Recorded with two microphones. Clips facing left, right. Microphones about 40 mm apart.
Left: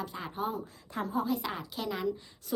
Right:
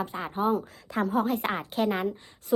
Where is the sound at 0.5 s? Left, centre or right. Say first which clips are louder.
Right 7 dB; right.